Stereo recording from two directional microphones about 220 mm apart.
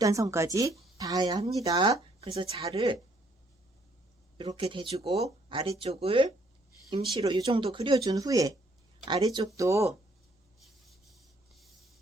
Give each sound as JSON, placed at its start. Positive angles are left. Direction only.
{"t": 0.0, "sound": "speech", "side_deg": -15}
{"t": 4.4, "sound": "speech", "side_deg": -25}
{"t": 11.1, "sound": "rub", "side_deg": 0}